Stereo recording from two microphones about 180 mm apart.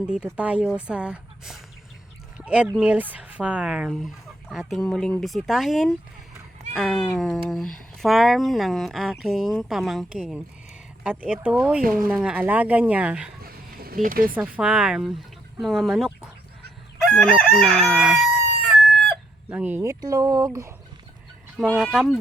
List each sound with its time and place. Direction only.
0.0 s speech: 5° right (ahead or behind)
13.4 s a sound: 55° right (ahead or behind)
14.3 s speech: 10° right (ahead or behind)
19.5 s speech: 10° right (ahead or behind)
21.8 s speech: 5° right (ahead or behind)